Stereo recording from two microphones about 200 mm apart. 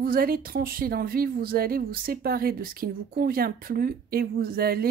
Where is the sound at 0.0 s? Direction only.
45° right (ahead or behind).